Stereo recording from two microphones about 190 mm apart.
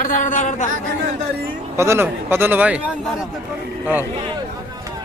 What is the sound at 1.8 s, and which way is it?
Speech, 15° right (ahead or behind).